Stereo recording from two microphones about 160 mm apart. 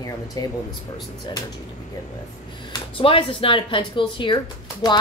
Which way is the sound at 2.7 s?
35° left (ahead or behind).